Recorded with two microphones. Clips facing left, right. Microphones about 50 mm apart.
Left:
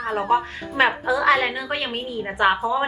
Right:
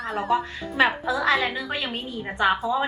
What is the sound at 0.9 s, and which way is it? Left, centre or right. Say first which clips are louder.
A woman's voice: left 4 dB; left.